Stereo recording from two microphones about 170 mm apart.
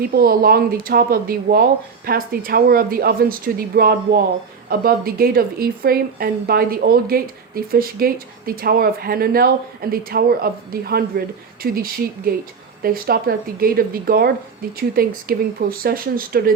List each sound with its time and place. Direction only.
0.0 s a woman's voice: 60° right (ahead or behind)